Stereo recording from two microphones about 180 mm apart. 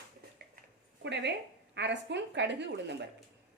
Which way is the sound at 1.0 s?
75° right (ahead or behind).